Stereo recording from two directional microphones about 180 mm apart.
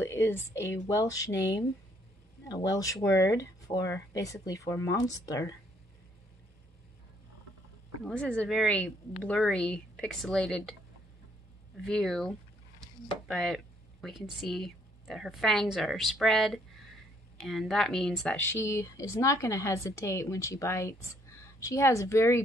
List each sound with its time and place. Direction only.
0.0 s a sound: 10° left (ahead or behind)
0.8 s speech: 20° left (ahead or behind)
2.4 s speech: 20° left (ahead or behind)
8.0 s a woman's voice: 5° left (ahead or behind)